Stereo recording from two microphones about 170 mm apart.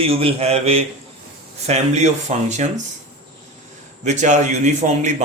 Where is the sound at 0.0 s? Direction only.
35° right (ahead or behind).